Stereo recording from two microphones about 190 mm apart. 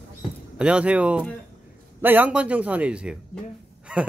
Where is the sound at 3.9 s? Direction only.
5° right (ahead or behind).